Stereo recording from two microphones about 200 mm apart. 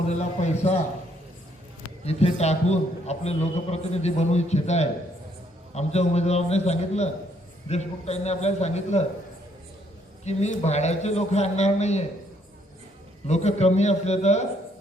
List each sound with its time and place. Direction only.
0.1 s a man's voice: 35° left (ahead or behind)
2.0 s a man's voice: 30° left (ahead or behind)
10.2 s a man's voice: 35° left (ahead or behind)
13.2 s a man's voice: 35° left (ahead or behind)